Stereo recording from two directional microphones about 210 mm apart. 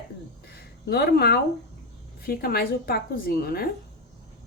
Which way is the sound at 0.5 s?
50° left (ahead or behind).